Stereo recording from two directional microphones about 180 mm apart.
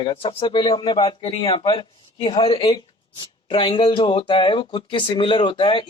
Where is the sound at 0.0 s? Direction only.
30° left (ahead or behind).